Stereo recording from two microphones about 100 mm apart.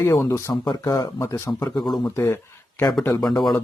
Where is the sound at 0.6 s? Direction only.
45° left (ahead or behind).